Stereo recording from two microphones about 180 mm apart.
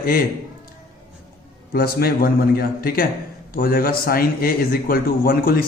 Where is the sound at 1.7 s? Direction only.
55° left (ahead or behind).